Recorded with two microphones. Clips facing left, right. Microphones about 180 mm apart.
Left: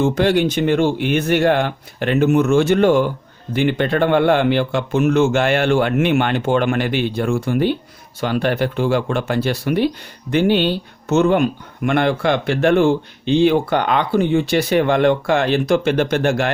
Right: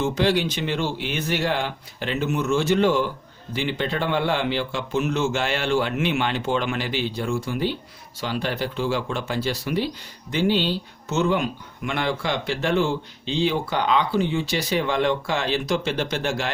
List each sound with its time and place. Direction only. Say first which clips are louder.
0.0 s speech: left 6 dB; 55° left (ahead or behind)